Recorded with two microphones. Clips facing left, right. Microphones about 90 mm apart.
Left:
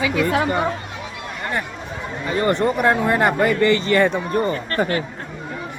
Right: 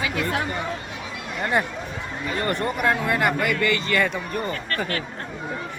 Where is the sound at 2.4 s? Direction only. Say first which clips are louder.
Left 7 dB; 20° left (ahead or behind).